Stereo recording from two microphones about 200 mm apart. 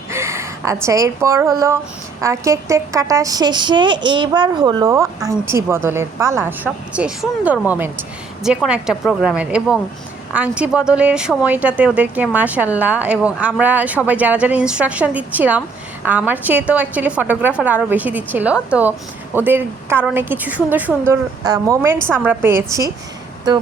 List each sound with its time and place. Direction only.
0.1 s gasp: 15° right (ahead or behind)
1.5 s a woman's voice: 15° right (ahead or behind)